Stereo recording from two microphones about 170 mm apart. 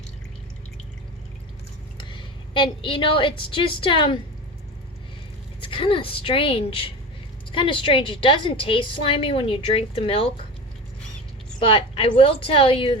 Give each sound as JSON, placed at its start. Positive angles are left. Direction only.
{"t": 2.0, "sound": "a woman's voice", "side_deg": 30}
{"t": 5.5, "sound": "a woman's voice", "side_deg": 30}
{"t": 11.6, "sound": "a woman's voice", "side_deg": 30}